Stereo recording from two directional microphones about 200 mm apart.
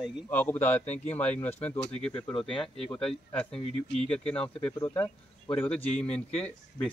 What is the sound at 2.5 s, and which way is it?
Speech, 25° left (ahead or behind).